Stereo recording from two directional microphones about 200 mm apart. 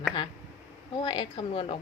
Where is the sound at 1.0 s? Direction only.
25° left (ahead or behind).